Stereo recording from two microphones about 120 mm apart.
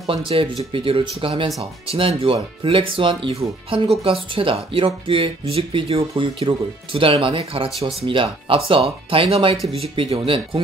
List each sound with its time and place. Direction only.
0.0 s speech: 50° right (ahead or behind)